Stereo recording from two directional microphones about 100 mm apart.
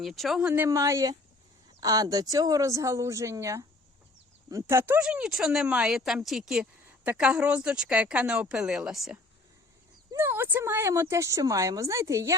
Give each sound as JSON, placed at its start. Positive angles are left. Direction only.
{"t": 0.0, "sound": "speech", "side_deg": 0}
{"t": 0.4, "sound": "speech", "side_deg": -20}
{"t": 0.7, "sound": "speech", "side_deg": -30}
{"t": 4.9, "sound": "a woman's voice", "side_deg": -10}
{"t": 7.0, "sound": "a woman's voice", "side_deg": -15}
{"t": 10.2, "sound": "speech", "side_deg": -25}